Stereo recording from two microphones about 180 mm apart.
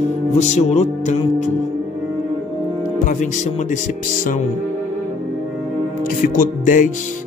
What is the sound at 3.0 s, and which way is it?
Speech, 45° left (ahead or behind).